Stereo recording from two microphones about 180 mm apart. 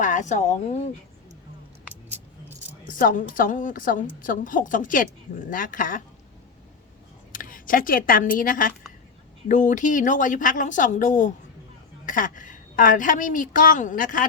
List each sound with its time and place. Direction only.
0.0 s speech: 45° left (ahead or behind)
2.9 s a woman's voice: 50° left (ahead or behind)
7.3 s a woman's voice: 50° left (ahead or behind)